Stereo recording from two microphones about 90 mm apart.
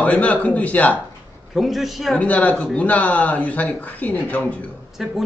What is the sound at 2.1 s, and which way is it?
Speech, 15° left (ahead or behind).